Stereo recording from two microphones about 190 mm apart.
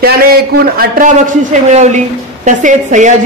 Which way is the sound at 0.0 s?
55° right (ahead or behind).